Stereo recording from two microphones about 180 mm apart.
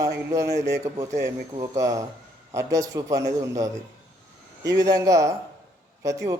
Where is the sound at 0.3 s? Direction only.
15° right (ahead or behind).